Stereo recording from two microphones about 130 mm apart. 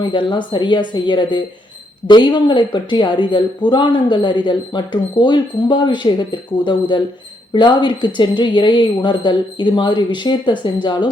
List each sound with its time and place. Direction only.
0.0 s speech: 35° left (ahead or behind)